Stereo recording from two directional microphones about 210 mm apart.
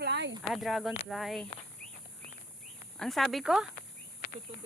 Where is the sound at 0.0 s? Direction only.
55° right (ahead or behind).